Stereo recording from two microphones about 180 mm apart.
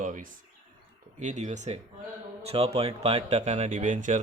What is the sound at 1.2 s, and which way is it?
Speech, 40° right (ahead or behind).